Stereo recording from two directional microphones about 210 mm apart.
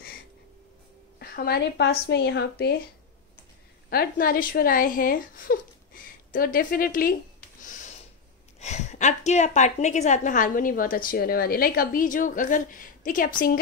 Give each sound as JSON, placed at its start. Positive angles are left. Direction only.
{"t": 1.2, "sound": "a woman's voice", "side_deg": 50}
{"t": 3.9, "sound": "speech", "side_deg": 45}
{"t": 8.5, "sound": "a woman's voice", "side_deg": 30}